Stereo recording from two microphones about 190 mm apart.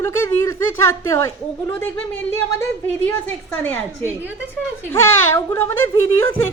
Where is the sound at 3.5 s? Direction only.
10° left (ahead or behind).